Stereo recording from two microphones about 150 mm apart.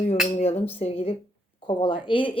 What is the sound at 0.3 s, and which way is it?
A woman's voice, 45° left (ahead or behind).